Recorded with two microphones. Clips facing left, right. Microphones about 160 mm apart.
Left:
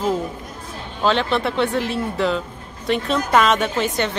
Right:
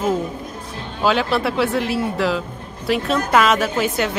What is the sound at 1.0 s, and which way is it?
Speech, 5° right (ahead or behind).